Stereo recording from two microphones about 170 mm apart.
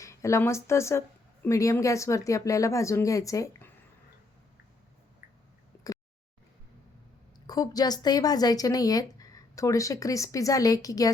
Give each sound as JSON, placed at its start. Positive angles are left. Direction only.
{"t": 0.0, "sound": "a woman's voice", "side_deg": 15}
{"t": 5.7, "sound": "a sound", "side_deg": 15}
{"t": 7.4, "sound": "a woman's voice", "side_deg": 20}